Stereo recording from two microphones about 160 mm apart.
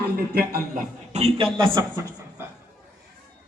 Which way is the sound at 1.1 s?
40° right (ahead or behind).